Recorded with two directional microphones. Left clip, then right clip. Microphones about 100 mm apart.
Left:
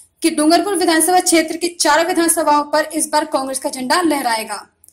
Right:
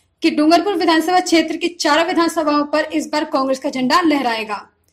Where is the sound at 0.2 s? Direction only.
35° right (ahead or behind).